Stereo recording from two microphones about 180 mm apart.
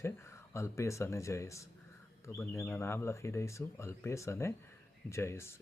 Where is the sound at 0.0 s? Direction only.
15° left (ahead or behind).